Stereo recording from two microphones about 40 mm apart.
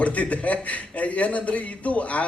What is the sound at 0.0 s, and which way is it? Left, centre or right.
A man's voice, left.